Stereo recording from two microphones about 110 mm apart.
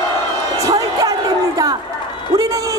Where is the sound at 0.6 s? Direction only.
35° right (ahead or behind).